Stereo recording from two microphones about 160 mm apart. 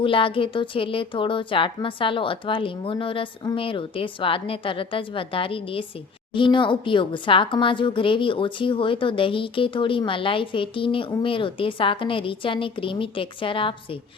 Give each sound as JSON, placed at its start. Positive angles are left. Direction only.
{"t": 0.0, "sound": "a woman's voice", "side_deg": 35}